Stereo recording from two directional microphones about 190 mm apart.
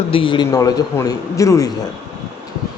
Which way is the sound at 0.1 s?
25° left (ahead or behind).